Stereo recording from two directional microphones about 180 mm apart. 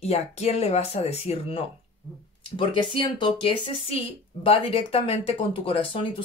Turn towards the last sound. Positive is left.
turn(degrees=30)  # may be behind; listen again after turning